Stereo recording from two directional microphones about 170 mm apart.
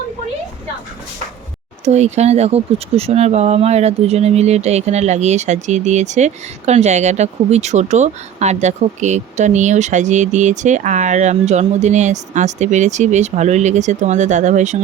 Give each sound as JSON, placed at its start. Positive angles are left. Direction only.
{"t": 1.8, "sound": "speech", "side_deg": -40}